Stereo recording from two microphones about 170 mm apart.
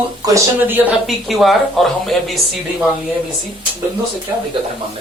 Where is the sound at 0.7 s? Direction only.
5° right (ahead or behind).